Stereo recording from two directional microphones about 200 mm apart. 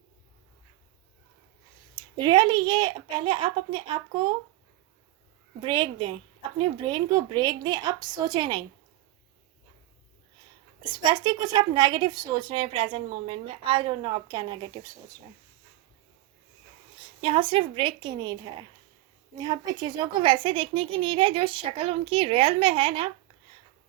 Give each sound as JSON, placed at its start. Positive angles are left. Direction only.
{"t": 2.0, "sound": "a woman's voice", "side_deg": -20}
{"t": 5.6, "sound": "a woman's voice", "side_deg": -25}
{"t": 10.8, "sound": "a woman's voice", "side_deg": -20}
{"t": 17.2, "sound": "a woman's voice", "side_deg": -25}
{"t": 19.4, "sound": "a woman's voice", "side_deg": -20}